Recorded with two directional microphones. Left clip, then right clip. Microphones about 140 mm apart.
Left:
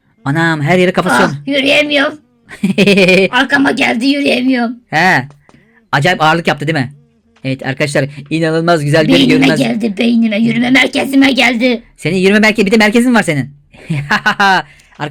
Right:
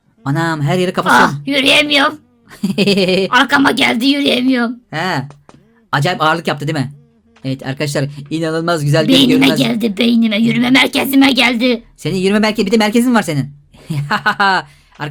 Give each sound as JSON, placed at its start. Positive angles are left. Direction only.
{"t": 0.2, "sound": "speech", "side_deg": 15}
{"t": 1.0, "sound": "speech", "side_deg": -5}
{"t": 2.5, "sound": "speech", "side_deg": 15}
{"t": 3.5, "sound": "speech", "side_deg": -5}
{"t": 4.9, "sound": "speech", "side_deg": 20}
{"t": 5.9, "sound": "speech", "side_deg": 10}
{"t": 15.0, "sound": "speech", "side_deg": 25}